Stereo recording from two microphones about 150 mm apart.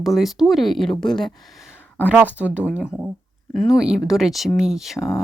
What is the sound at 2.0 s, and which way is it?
Speech, 10° right (ahead or behind).